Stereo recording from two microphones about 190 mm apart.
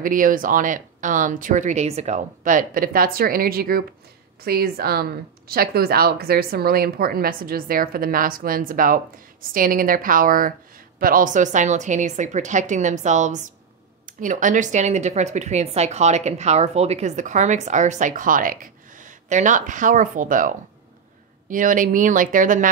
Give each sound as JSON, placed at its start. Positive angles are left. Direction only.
{"t": 0.0, "sound": "speech", "side_deg": -45}